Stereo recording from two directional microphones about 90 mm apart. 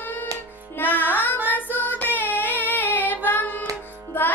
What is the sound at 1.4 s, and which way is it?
Child singing, 20° left (ahead or behind).